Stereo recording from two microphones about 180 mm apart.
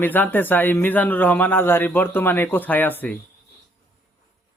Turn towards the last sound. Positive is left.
turn(degrees=10)  # may be behind; listen again after turning